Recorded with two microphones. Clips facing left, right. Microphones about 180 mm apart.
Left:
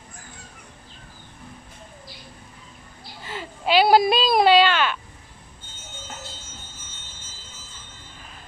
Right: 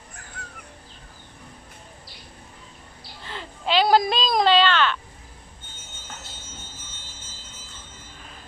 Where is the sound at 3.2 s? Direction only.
10° left (ahead or behind).